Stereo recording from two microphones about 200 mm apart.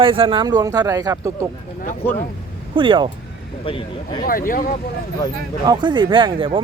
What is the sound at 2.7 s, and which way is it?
Speech, 25° right (ahead or behind).